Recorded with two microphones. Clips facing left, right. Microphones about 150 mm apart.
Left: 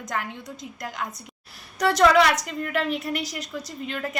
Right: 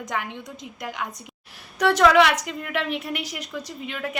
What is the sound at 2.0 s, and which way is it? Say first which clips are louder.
A woman's voice: even; centre (ahead or behind).